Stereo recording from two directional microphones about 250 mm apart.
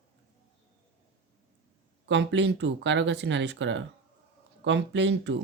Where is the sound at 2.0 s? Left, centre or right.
Right.